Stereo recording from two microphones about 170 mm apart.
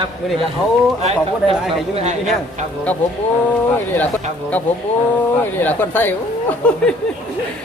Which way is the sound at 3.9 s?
10° left (ahead or behind).